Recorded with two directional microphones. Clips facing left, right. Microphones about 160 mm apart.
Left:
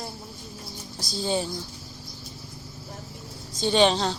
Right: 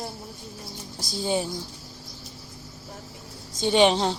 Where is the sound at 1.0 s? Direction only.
15° right (ahead or behind).